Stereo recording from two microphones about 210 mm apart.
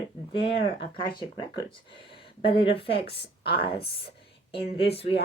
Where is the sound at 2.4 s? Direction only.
25° left (ahead or behind).